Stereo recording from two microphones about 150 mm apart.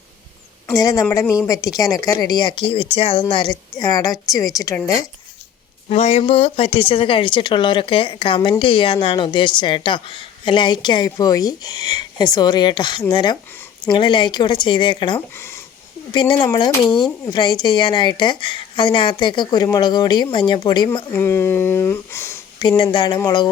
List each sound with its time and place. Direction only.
0.7 s speech: 25° left (ahead or behind)
5.9 s speech: 45° left (ahead or behind)
15.4 s a sound: 15° left (ahead or behind)
16.1 s speech: 30° left (ahead or behind)
21.1 s speech: 15° left (ahead or behind)
22.8 s speech: 30° left (ahead or behind)